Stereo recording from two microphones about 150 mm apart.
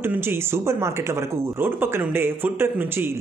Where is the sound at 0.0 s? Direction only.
15° right (ahead or behind).